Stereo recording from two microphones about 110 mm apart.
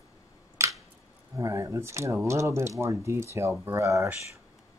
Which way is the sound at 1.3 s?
25° right (ahead or behind).